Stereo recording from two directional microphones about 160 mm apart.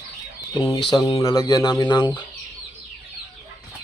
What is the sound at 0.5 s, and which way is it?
Speech, 30° left (ahead or behind).